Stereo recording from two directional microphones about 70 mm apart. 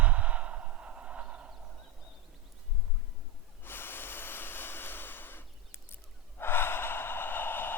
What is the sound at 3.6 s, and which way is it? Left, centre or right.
Breathing, left.